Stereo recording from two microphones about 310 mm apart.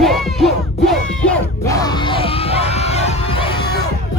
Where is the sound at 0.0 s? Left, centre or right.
Centre.